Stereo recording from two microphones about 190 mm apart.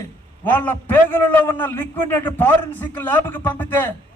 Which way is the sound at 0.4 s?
10° left (ahead or behind).